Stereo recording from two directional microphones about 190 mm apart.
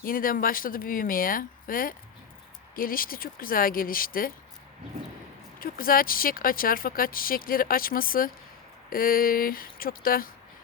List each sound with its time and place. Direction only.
0.0 s speech: 50° left (ahead or behind)
5.5 s speech: 50° left (ahead or behind)